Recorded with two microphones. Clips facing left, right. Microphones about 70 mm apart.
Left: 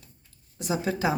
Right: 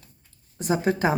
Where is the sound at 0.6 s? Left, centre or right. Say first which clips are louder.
Right 4 dB; right.